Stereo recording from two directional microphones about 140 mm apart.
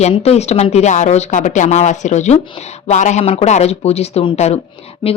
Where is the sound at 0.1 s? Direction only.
50° left (ahead or behind).